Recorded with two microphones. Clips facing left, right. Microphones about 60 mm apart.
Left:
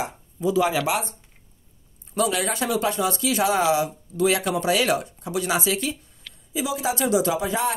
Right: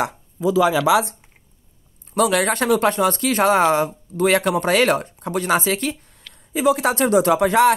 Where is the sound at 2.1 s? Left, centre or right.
Right.